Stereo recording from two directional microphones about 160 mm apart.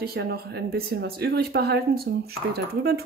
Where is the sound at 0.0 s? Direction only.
80° right.